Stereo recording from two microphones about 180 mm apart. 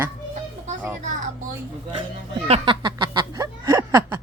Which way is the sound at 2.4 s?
30° right (ahead or behind).